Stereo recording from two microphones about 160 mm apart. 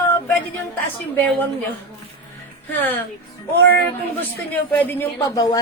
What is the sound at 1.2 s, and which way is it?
Speech, 10° left (ahead or behind).